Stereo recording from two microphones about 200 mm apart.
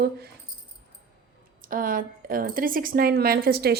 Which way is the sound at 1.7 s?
45° right (ahead or behind).